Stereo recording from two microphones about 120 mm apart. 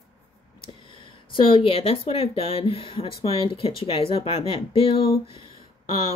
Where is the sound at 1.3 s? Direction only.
50° left (ahead or behind).